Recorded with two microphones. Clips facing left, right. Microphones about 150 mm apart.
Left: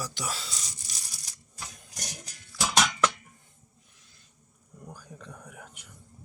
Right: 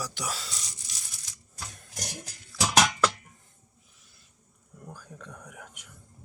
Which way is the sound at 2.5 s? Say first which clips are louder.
Right 2 dB; centre (ahead or behind).